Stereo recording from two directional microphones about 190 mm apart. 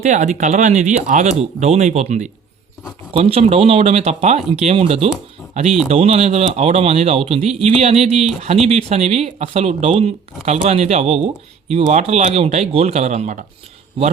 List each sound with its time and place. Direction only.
0.0 s speech: 40° right (ahead or behind)